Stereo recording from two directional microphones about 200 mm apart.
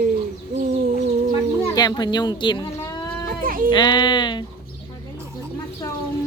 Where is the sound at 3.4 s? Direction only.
45° right (ahead or behind).